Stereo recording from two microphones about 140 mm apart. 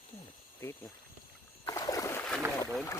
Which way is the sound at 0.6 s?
20° left (ahead or behind).